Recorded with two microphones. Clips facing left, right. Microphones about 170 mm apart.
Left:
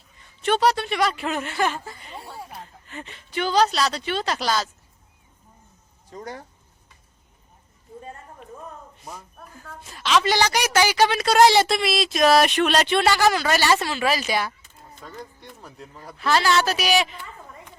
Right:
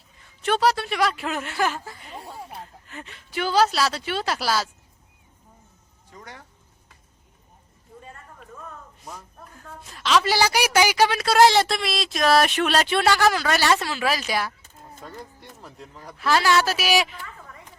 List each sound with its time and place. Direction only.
0.4 s a woman's voice: centre (ahead or behind)
6.1 s speech: 40° left (ahead or behind)
9.0 s a woman's voice: 5° left (ahead or behind)